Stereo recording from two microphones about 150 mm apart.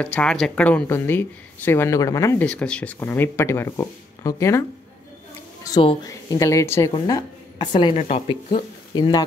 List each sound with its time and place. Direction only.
0.0 s speech: 5° left (ahead or behind)
2.4 s speech: 5° left (ahead or behind)
5.7 s a sound: 25° left (ahead or behind)
6.0 s speech: 20° left (ahead or behind)
8.0 s speech: 45° left (ahead or behind)
8.9 s speech: 25° left (ahead or behind)